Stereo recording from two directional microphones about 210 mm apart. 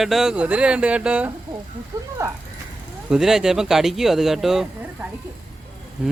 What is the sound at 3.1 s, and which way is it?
Speech, centre (ahead or behind).